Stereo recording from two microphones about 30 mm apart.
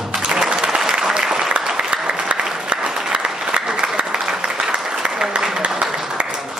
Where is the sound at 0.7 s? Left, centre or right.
Right.